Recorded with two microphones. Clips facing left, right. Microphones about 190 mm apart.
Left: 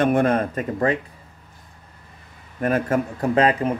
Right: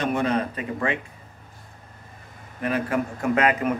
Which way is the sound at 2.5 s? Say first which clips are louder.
Left 4 dB; 45° left (ahead or behind).